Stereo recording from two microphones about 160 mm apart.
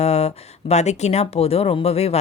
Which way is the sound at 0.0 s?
40° left (ahead or behind).